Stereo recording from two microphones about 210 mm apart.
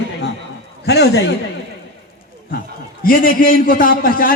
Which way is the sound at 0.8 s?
50° left (ahead or behind).